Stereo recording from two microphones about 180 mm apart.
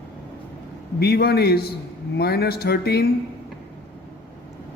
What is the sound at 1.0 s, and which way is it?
Speech, 65° left (ahead or behind).